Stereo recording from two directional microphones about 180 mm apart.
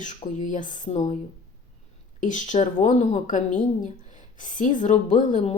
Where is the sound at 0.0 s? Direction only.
45° left (ahead or behind).